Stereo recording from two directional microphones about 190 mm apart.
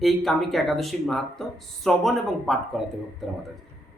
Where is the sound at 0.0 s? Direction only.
Centre (ahead or behind).